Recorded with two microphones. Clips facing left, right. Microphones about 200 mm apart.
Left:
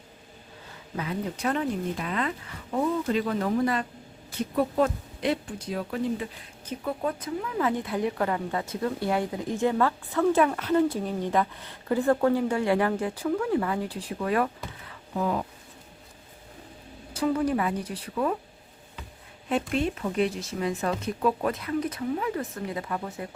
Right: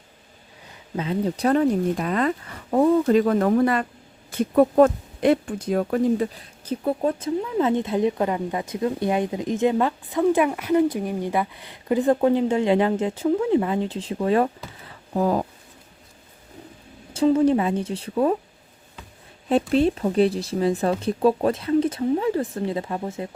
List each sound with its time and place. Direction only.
0.9 s speech: 30° right (ahead or behind); by 6.2 s 50° right (ahead or behind)
6.7 s speech: 30° right (ahead or behind)
14.8 s a sound: 40° right (ahead or behind)
17.2 s speech: 25° right (ahead or behind)
19.5 s speech: 35° right (ahead or behind)